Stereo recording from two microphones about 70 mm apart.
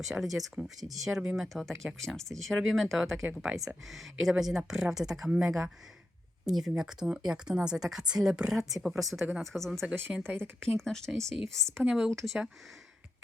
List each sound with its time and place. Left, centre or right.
0.0 s speech: centre
10.1 s speech: centre
10.8 s a woman's voice: centre
11.9 s speech: centre